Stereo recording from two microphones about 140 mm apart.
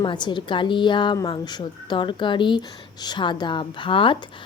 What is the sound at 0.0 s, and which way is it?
Speech, 35° left (ahead or behind).